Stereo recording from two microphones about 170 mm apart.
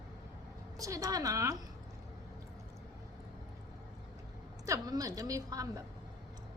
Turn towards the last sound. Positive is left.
turn(degrees=-20)  # may be behind; listen again after turning